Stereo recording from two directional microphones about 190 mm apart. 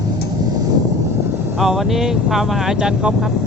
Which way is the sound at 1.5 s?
Centre (ahead or behind).